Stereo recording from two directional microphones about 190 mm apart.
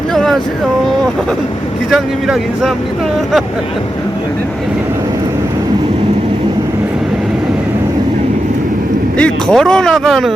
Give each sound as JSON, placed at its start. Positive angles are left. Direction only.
{"t": 0.1, "sound": "a sound", "side_deg": 0}
{"t": 1.9, "sound": "speech", "side_deg": 0}
{"t": 9.1, "sound": "speech", "side_deg": 5}